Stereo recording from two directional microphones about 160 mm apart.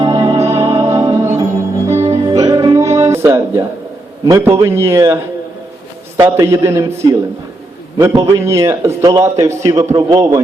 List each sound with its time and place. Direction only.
0.0 s music: 25° right (ahead or behind)
2.0 s music: 35° right (ahead or behind)
2.3 s music: 20° right (ahead or behind)
4.3 s a man's voice: 15° right (ahead or behind)